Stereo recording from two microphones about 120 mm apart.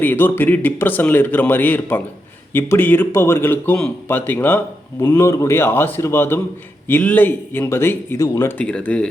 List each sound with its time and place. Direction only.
0.0 s speech: 15° left (ahead or behind)
8.5 s speech: 10° left (ahead or behind)